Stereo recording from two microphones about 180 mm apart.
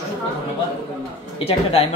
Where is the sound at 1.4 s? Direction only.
35° left (ahead or behind).